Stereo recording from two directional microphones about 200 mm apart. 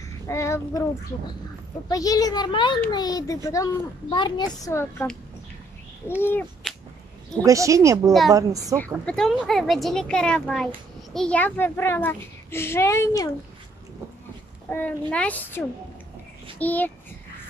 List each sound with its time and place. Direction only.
0.3 s child singing: 15° left (ahead or behind)
1.9 s a child's voice: 15° left (ahead or behind)
6.6 s whip: 5° right (ahead or behind)
7.4 s speech: 15° right (ahead or behind)
8.7 s a child's voice: 5° left (ahead or behind)
14.7 s a child's voice: 10° left (ahead or behind)